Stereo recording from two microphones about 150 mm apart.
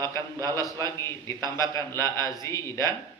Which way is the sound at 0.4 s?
20° left (ahead or behind).